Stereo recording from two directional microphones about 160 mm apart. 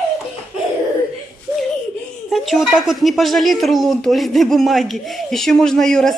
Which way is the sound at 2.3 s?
Centre (ahead or behind).